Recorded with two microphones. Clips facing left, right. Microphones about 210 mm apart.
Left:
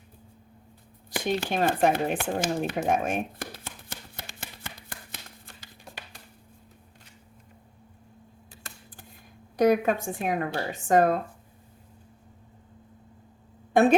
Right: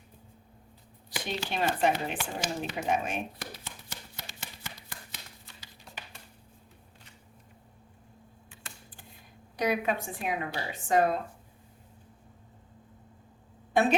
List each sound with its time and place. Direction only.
1.1 s a sound: 50° left (ahead or behind)
8.6 s camera: 40° left (ahead or behind)
9.6 s speech: 45° left (ahead or behind)